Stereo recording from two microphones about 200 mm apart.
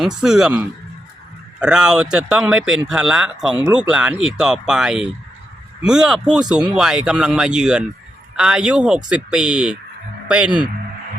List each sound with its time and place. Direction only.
0.0 s speech: centre (ahead or behind)
1.5 s speech: 5° right (ahead or behind)